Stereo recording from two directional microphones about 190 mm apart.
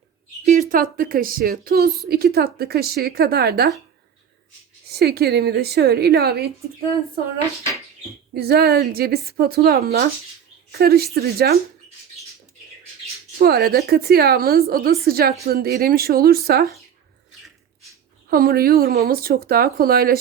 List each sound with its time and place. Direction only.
0.7 s a woman's voice: 50° right (ahead or behind)
4.9 s a woman's voice: 55° right (ahead or behind)
8.3 s a woman's voice: 55° right (ahead or behind)
13.4 s speech: 55° right (ahead or behind)
18.3 s speech: 50° right (ahead or behind)